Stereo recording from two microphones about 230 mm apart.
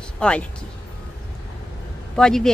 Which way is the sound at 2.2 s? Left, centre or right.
Centre.